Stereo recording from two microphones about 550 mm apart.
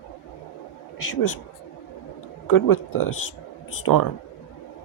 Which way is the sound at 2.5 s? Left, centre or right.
Left.